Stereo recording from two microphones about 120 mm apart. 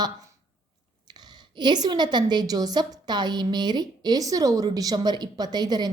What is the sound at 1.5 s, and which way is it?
A woman's voice, 35° right (ahead or behind).